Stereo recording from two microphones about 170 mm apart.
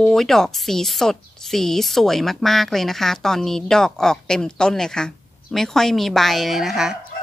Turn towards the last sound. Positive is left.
turn(degrees=0)  # may be behind; listen again after turning